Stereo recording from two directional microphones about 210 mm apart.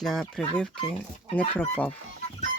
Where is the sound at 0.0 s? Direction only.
Centre (ahead or behind).